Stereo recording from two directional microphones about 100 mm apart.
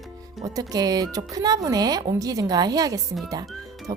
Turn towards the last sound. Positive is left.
turn(degrees=-35)  # may be behind; listen again after turning